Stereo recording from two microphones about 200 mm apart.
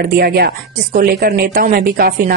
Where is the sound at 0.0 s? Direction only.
50° right (ahead or behind).